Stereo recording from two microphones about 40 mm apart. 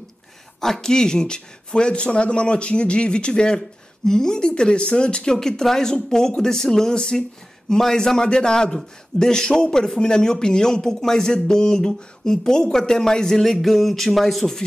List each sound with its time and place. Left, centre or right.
0.6 s speech: centre